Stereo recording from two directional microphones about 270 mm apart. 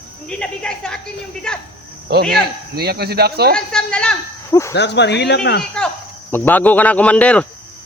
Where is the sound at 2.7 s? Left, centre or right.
Right.